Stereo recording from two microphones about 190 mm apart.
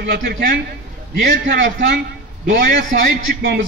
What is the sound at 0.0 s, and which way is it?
A man's voice, 60° right (ahead or behind).